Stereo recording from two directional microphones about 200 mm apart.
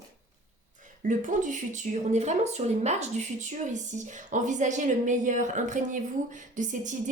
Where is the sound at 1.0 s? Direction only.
40° right (ahead or behind).